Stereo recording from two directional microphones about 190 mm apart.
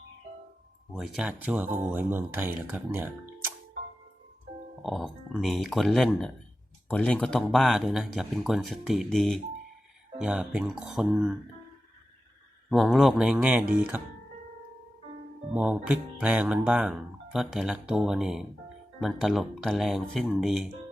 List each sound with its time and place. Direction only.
0.9 s speech: centre (ahead or behind)
4.8 s speech: centre (ahead or behind)
12.7 s speech: centre (ahead or behind)
15.5 s speech: 5° right (ahead or behind)